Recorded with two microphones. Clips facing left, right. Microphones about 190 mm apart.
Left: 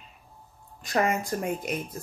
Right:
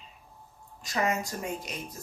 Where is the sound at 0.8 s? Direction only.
55° left (ahead or behind).